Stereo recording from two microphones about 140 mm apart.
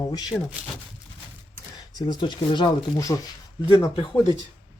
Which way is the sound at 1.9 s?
30° left (ahead or behind).